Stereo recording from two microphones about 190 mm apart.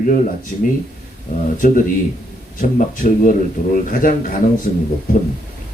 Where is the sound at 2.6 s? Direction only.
45° left (ahead or behind).